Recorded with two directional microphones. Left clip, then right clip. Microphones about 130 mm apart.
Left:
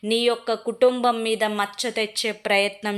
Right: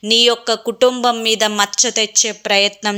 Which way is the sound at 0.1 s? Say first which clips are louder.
Right 8 dB; 20° right (ahead or behind).